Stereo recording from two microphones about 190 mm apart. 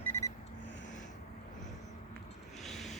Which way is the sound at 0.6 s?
65° left (ahead or behind).